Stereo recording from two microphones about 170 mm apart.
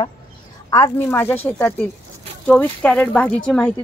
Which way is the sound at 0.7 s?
20° left (ahead or behind).